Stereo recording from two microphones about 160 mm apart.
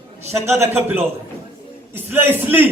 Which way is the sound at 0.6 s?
15° right (ahead or behind).